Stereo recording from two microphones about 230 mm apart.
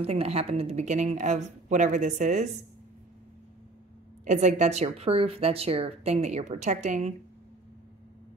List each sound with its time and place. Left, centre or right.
0.0 s a woman's voice: right
4.2 s speech: right